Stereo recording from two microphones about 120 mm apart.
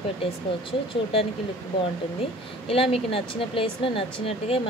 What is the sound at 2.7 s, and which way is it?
Speech, 50° left (ahead or behind).